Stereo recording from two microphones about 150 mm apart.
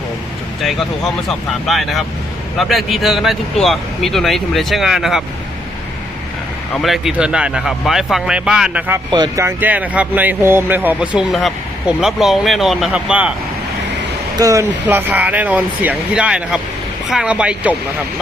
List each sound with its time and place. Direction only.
0.6 s speech: centre (ahead or behind)
6.8 s speech: centre (ahead or behind)
9.0 s speech: 30° right (ahead or behind)
9.4 s speech: 15° right (ahead or behind)
14.3 s speech: 20° right (ahead or behind)